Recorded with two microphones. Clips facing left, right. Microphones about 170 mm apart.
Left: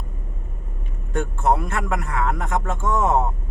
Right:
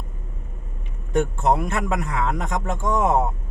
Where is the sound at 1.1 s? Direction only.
20° right (ahead or behind).